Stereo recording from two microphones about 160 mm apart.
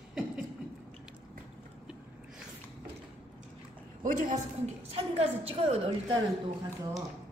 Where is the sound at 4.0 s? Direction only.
55° right (ahead or behind).